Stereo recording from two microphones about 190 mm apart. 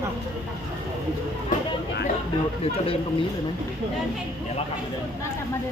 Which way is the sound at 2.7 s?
30° left (ahead or behind).